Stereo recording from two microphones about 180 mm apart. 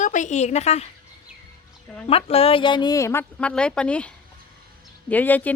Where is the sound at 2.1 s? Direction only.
35° left (ahead or behind).